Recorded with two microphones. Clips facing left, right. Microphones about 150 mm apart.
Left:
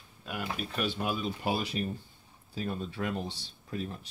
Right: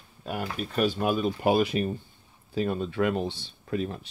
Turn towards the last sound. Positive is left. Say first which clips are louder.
# right 7 dB
turn(degrees=-75)  # may be behind; listen again after turning